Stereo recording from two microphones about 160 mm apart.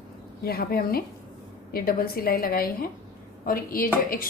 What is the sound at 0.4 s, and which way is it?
A woman's voice, 70° left (ahead or behind).